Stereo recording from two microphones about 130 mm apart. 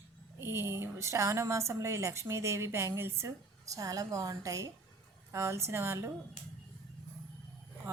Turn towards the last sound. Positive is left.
turn(degrees=-20)  # may be behind; listen again after turning